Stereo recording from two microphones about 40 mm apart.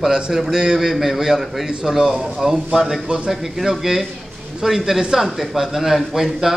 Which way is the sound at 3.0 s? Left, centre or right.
Centre.